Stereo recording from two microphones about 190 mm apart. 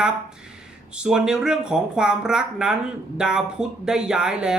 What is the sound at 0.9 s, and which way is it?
Speech, 5° right (ahead or behind).